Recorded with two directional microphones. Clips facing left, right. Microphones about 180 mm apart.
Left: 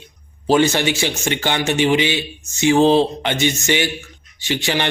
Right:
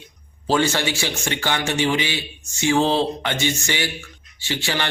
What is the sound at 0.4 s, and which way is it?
A man's voice, 15° left (ahead or behind).